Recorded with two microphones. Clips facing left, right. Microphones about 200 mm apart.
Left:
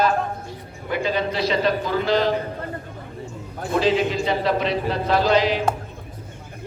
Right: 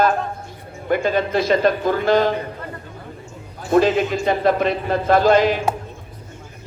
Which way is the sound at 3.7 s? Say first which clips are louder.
Right 4 dB; 50° right (ahead or behind).